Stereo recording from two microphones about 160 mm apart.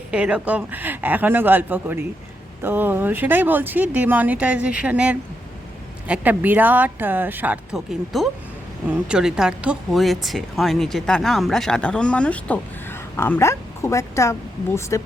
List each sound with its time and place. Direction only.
0.1 s speech: 5° right (ahead or behind)
8.1 s speech: centre (ahead or behind); by 15.0 s 20° left (ahead or behind)